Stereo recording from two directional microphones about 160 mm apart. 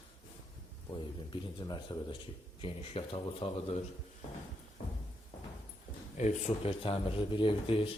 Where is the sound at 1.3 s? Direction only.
30° left (ahead or behind).